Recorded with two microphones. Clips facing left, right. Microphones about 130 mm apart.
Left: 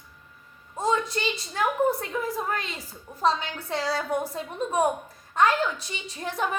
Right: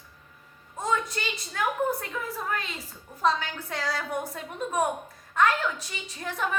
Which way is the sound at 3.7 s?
30° left (ahead or behind).